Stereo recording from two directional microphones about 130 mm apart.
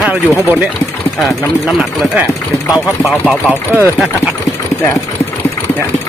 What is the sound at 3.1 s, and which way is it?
Speech, centre (ahead or behind).